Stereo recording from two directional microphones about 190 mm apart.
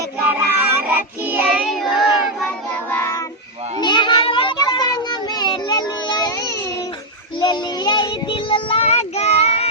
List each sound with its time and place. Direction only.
0.3 s child singing: 10° right (ahead or behind); by 3.2 s 15° left (ahead or behind)
3.8 s a sound: 25° left (ahead or behind)
7.3 s child singing: 25° left (ahead or behind)